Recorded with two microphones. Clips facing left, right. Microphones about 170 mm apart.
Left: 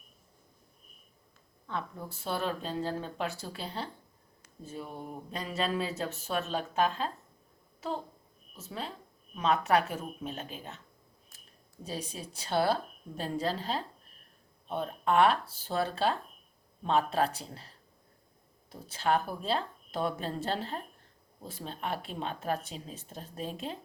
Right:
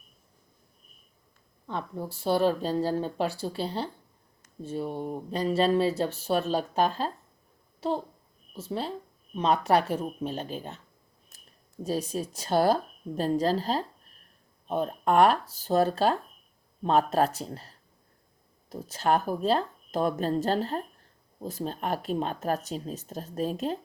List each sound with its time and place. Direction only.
1.6 s speech: 30° right (ahead or behind)
8.5 s speech: 30° right (ahead or behind)
11.8 s speech: 40° right (ahead or behind)
18.7 s speech: 40° right (ahead or behind)